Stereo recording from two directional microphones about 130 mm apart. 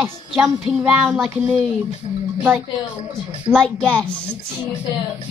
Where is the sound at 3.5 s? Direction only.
5° left (ahead or behind).